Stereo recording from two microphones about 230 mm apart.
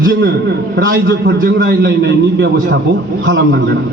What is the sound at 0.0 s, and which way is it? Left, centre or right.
A man's voice, right.